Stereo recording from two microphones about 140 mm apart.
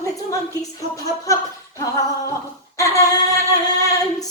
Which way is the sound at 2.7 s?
25° left (ahead or behind).